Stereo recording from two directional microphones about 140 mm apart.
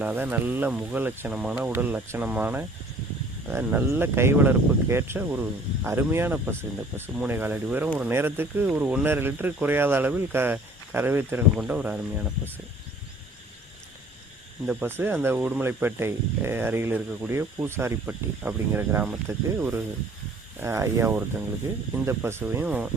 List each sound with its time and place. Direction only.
0.0 s speech: 10° right (ahead or behind)
14.7 s speech: 15° right (ahead or behind)